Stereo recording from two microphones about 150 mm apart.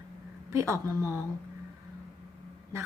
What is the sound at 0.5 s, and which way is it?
Speech, 20° right (ahead or behind).